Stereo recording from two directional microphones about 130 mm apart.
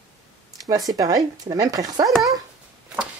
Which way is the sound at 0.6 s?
25° right (ahead or behind).